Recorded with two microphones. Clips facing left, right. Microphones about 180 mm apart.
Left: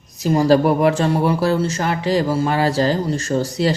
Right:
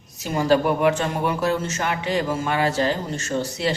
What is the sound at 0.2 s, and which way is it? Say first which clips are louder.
Speech: left 5 dB; 35° left (ahead or behind).